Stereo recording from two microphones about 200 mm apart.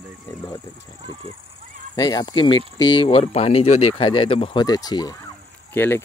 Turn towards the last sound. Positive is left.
turn(degrees=10)  # may be behind; listen again after turning